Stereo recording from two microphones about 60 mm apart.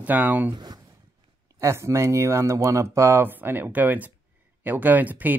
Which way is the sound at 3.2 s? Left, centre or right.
Right.